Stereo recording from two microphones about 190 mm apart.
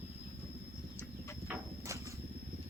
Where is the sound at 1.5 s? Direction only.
15° right (ahead or behind).